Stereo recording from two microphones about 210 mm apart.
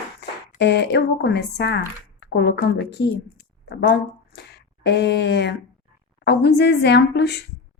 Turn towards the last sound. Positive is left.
turn(degrees=55)  # may be behind; listen again after turning